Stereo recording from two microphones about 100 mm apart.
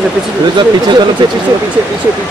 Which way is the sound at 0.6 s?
50° right (ahead or behind).